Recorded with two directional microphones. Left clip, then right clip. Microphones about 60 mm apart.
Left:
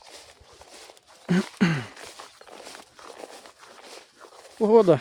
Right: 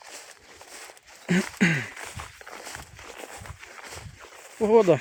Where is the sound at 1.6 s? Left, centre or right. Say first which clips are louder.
Right 4 dB; left.